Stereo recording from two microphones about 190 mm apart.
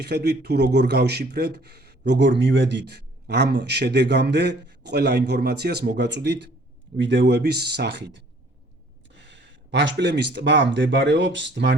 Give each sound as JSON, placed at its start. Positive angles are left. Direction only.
{"t": 0.0, "sound": "speech", "side_deg": -60}